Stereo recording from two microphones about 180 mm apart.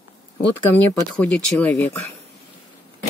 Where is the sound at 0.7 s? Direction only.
10° left (ahead or behind).